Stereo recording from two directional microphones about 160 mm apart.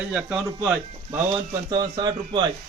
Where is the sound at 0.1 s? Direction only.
5° right (ahead or behind).